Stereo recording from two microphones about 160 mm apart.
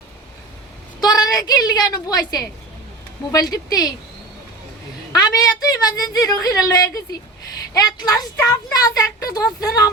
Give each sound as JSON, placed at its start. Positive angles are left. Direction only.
{"t": 1.0, "sound": "a woman's voice", "side_deg": 25}
{"t": 5.3, "sound": "speech", "side_deg": 25}